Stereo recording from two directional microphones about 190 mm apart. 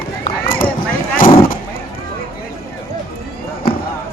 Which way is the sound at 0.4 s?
50° left (ahead or behind).